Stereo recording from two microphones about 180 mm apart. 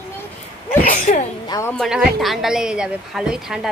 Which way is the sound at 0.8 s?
45° left (ahead or behind).